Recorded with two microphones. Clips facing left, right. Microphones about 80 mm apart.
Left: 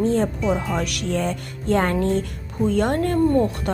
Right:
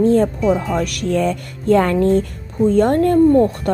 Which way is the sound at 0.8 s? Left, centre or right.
Right.